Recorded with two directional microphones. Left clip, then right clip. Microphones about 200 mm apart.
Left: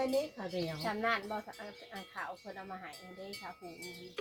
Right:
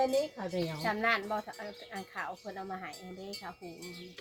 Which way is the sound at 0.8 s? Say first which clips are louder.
Right 4 dB; 20° right (ahead or behind).